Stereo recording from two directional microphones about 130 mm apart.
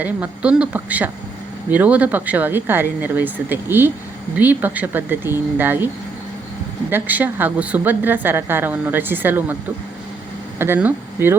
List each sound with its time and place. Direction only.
0.0 s a woman's voice: 10° right (ahead or behind)
6.9 s a woman's voice: 15° right (ahead or behind)
10.6 s speech: 15° right (ahead or behind)